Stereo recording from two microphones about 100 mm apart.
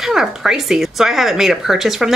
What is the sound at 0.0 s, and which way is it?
Speech, 5° right (ahead or behind).